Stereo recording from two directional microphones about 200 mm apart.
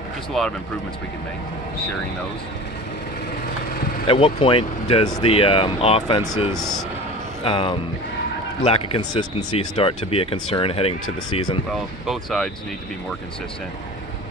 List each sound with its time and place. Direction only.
0.3 s speech: centre (ahead or behind)
4.1 s speech: 25° left (ahead or behind)
11.7 s speech: centre (ahead or behind)